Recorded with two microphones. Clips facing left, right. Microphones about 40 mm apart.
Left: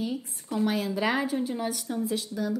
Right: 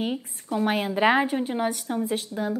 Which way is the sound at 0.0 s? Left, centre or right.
Right.